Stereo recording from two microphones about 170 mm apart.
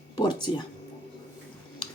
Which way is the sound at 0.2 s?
25° left (ahead or behind).